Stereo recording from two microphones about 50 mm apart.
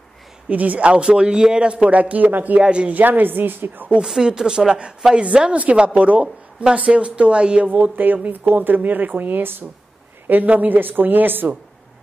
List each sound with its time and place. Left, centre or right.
0.5 s a man's voice: right
2.6 s a man's voice: right
2.9 s speech: right
4.0 s a man's voice: centre
7.7 s speech: right
10.2 s speech: right